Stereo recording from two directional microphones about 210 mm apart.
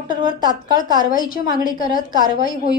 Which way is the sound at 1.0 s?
40° left (ahead or behind).